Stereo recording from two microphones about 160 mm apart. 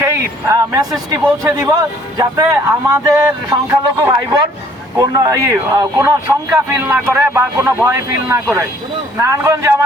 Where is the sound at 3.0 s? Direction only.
15° right (ahead or behind).